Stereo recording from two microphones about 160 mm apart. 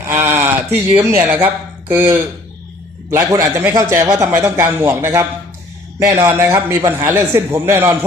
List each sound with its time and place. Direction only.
0.2 s a man's voice: 15° right (ahead or behind)